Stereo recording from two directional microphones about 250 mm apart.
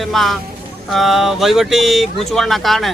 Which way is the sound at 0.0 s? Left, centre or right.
Centre.